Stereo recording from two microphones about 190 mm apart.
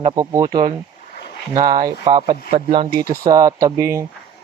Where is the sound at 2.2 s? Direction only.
35° right (ahead or behind); by 4.0 s 15° right (ahead or behind).